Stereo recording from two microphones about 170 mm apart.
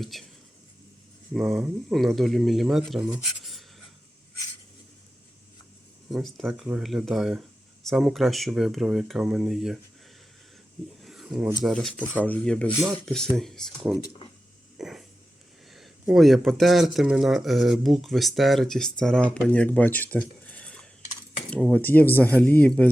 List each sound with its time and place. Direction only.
0.0 s speech: centre (ahead or behind)
1.3 s speech: centre (ahead or behind)
6.1 s speech: centre (ahead or behind)
11.0 s a sound: centre (ahead or behind)
11.6 s speech: centre (ahead or behind)
14.0 s speech: 20° left (ahead or behind)
14.8 s a sound: centre (ahead or behind)
15.7 s speech: centre (ahead or behind)